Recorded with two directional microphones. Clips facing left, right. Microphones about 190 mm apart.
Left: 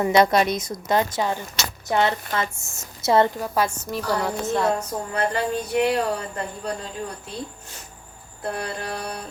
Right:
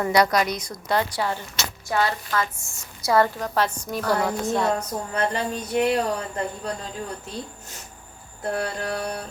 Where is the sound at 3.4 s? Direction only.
10° left (ahead or behind).